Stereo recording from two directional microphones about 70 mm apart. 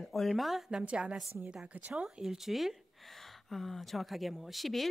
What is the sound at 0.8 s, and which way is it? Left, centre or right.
A woman's voice, centre.